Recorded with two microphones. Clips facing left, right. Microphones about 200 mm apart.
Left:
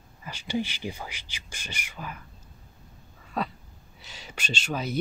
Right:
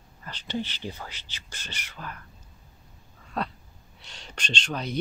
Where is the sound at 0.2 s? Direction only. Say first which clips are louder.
Left 2 dB; 10° left (ahead or behind).